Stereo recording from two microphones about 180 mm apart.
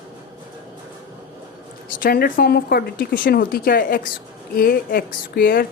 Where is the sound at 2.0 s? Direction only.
55° left (ahead or behind).